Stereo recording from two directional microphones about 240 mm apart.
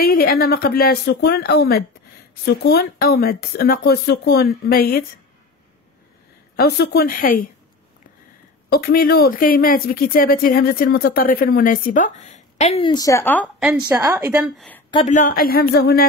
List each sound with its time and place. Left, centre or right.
0.0 s a woman's voice: left
6.5 s a woman's voice: left
8.6 s a woman's voice: left; by 14.8 s centre
14.9 s a woman's voice: centre
15.1 s a woman's voice: left